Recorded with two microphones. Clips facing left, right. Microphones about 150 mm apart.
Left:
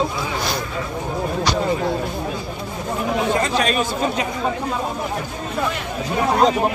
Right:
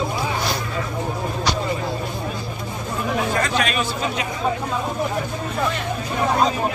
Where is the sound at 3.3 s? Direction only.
30° left (ahead or behind).